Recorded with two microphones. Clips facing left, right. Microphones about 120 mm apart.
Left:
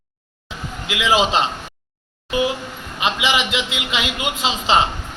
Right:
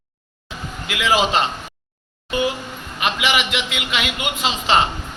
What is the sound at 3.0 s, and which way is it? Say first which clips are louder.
A man's voice: left 1 dB; 25° left (ahead or behind).